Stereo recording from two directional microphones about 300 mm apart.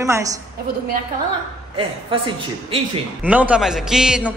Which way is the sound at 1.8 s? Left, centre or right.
Centre.